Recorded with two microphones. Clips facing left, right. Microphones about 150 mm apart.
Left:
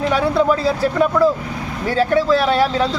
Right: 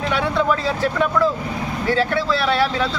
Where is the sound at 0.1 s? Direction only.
40° left (ahead or behind).